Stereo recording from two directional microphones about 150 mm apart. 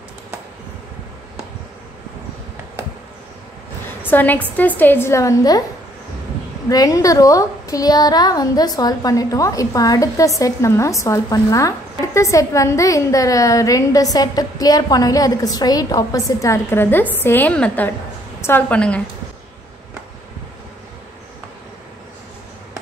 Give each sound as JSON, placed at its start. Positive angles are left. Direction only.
{"t": 4.0, "sound": "a woman's voice", "side_deg": 10}
{"t": 6.7, "sound": "a woman's voice", "side_deg": 25}